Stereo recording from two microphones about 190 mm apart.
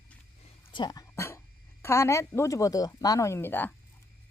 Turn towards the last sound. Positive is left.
turn(degrees=10)  # may be behind; listen again after turning